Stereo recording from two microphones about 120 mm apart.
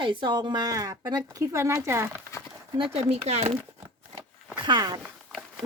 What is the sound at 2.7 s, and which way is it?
Speech, 50° right (ahead or behind).